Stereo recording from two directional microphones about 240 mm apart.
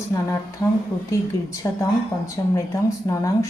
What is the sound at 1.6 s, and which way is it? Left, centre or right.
Speech, centre.